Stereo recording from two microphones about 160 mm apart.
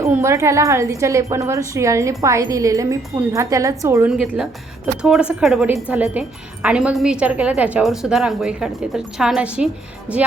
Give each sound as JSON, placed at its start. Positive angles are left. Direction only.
{"t": 0.0, "sound": "speech", "side_deg": -15}
{"t": 4.1, "sound": "a woman's voice", "side_deg": -5}